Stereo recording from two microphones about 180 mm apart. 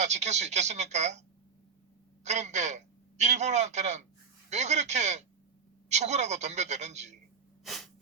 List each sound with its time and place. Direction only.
0.0 s a woman's voice: 40° right (ahead or behind)
2.2 s a man's voice: 40° right (ahead or behind)
7.6 s sneeze: centre (ahead or behind)